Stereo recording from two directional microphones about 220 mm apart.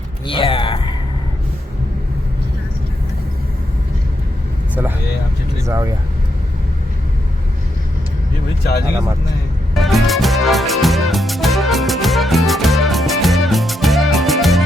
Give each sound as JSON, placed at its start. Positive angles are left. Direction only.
{"t": 0.3, "sound": "a sound", "side_deg": 25}
{"t": 4.7, "sound": "vehicle", "side_deg": -10}
{"t": 5.6, "sound": "speech", "side_deg": -15}
{"t": 9.7, "sound": "music", "side_deg": 0}